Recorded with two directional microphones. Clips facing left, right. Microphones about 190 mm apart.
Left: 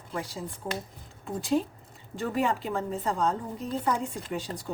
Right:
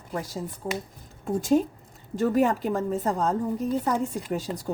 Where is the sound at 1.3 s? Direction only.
45° right (ahead or behind).